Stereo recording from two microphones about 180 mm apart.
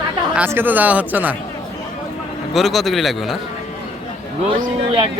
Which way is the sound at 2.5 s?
Centre (ahead or behind).